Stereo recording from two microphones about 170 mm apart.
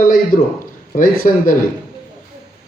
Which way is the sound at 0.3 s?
55° left (ahead or behind).